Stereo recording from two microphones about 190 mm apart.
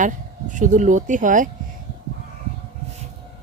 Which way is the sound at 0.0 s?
40° right (ahead or behind).